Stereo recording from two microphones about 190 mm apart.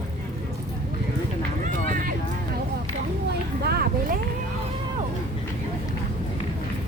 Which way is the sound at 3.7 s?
50° right (ahead or behind).